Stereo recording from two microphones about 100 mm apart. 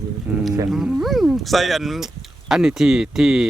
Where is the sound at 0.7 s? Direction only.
Centre (ahead or behind).